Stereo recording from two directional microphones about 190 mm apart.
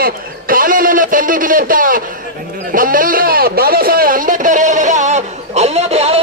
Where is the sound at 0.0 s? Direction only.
50° right (ahead or behind).